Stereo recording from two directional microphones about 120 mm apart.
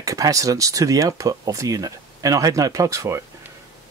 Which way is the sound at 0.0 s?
30° right (ahead or behind).